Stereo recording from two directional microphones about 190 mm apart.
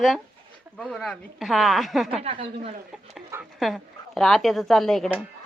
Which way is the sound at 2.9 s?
5° right (ahead or behind).